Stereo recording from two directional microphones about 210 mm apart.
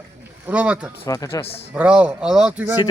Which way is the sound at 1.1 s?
15° left (ahead or behind).